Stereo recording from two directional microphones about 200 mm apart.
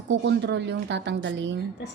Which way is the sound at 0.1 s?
60° right (ahead or behind).